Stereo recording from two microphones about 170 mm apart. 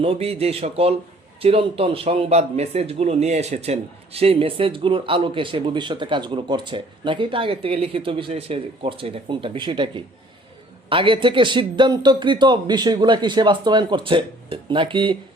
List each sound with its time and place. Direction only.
0.0 s a man's voice: 35° right (ahead or behind)